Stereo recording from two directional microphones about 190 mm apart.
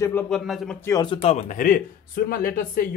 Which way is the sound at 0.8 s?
20° left (ahead or behind).